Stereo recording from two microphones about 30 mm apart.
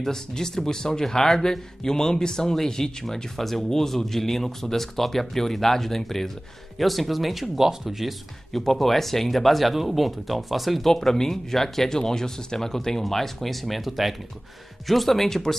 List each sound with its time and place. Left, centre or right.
0.0 s a man's voice: centre
7.5 s speech: centre
8.7 s speech: centre
10.9 s speech: centre
15.2 s speech: centre